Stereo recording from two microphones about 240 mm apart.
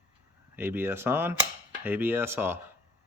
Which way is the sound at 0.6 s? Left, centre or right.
Centre.